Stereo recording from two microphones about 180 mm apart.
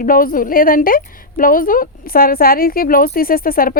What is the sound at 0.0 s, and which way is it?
A woman's voice, 50° left (ahead or behind).